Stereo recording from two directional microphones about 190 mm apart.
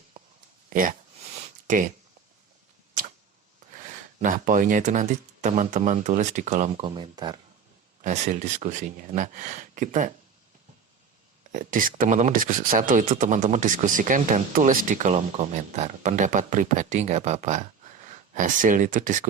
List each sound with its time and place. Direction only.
0.7 s speech: 45° right (ahead or behind)
4.2 s speech: 45° right (ahead or behind)
6.8 s speech: 25° right (ahead or behind)
8.0 s speech: 40° right (ahead or behind)
11.5 s speech: 45° right (ahead or behind)